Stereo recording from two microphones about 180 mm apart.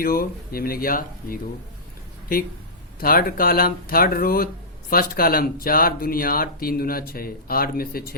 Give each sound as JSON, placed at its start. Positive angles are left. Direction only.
{"t": 0.0, "sound": "speech", "side_deg": 55}
{"t": 3.0, "sound": "speech", "side_deg": 55}